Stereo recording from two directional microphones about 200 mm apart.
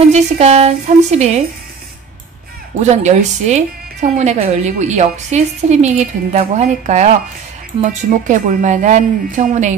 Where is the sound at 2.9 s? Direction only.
35° right (ahead or behind).